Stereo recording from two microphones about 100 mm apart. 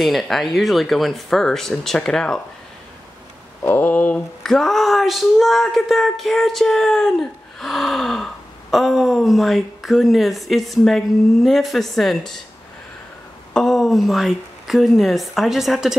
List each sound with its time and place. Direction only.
0.0 s speech: centre (ahead or behind)
3.6 s a sound: 20° left (ahead or behind)
4.4 s speech: 5° left (ahead or behind)
13.5 s speech: 5° left (ahead or behind)